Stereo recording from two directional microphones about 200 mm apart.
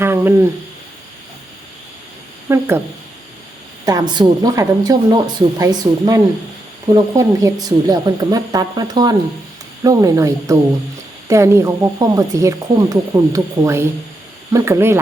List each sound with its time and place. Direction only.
0.0 s a sound: 10° right (ahead or behind)
2.5 s a woman's voice: 10° right (ahead or behind)
3.8 s a woman's voice: 20° right (ahead or behind)